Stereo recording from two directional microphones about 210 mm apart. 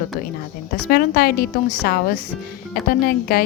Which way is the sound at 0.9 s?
45° left (ahead or behind).